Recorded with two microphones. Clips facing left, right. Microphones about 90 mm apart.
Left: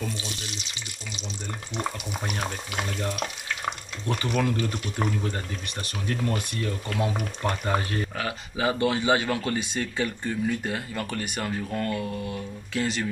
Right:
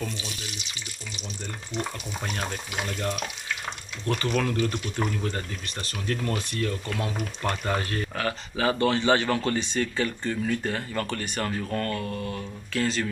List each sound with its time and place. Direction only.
1.7 s frying: 20° left (ahead or behind)
4.2 s speech: 15° left (ahead or behind)